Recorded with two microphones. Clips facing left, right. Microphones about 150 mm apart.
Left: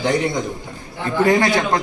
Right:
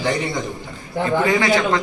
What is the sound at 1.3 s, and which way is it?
Speech, 45° left (ahead or behind).